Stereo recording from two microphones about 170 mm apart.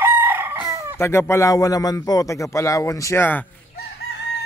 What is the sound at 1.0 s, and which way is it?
A man's voice, 15° left (ahead or behind).